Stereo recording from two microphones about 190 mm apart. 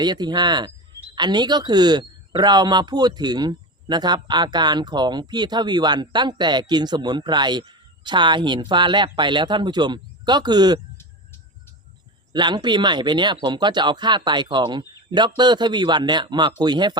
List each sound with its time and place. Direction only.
0.0 s speech: 20° right (ahead or behind)
12.3 s speech: 25° right (ahead or behind)